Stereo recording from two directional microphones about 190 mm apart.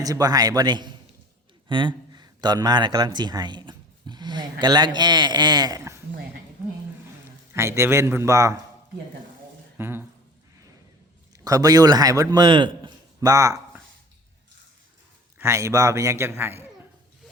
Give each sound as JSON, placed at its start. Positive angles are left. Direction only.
{"t": 0.0, "sound": "speech", "side_deg": -20}
{"t": 7.5, "sound": "a man's voice", "side_deg": -15}
{"t": 9.7, "sound": "a sound", "side_deg": -10}
{"t": 11.4, "sound": "a man's voice", "side_deg": -20}
{"t": 15.4, "sound": "a man's voice", "side_deg": -15}